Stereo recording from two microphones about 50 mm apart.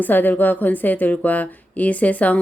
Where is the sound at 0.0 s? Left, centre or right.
Left.